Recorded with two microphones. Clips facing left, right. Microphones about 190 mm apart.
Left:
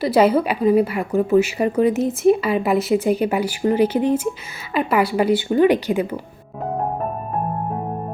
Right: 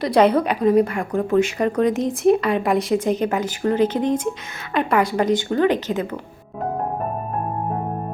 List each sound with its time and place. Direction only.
0.0 s a woman's voice: 5° left (ahead or behind)